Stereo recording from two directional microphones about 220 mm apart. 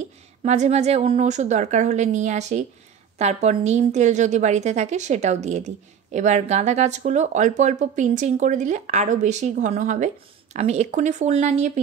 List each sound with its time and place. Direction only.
0.4 s speech: 30° right (ahead or behind)